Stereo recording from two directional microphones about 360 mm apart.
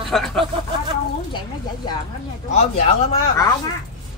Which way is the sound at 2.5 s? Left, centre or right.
Centre.